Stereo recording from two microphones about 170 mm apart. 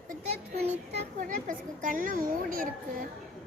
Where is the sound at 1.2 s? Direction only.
50° right (ahead or behind).